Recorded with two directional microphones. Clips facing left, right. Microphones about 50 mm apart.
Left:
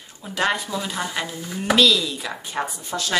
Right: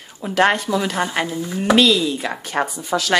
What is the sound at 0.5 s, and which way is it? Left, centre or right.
Speech, right.